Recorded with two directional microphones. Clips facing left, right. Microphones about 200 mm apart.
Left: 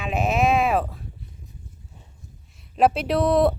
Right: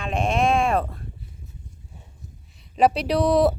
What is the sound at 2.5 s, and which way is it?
Speech, centre (ahead or behind).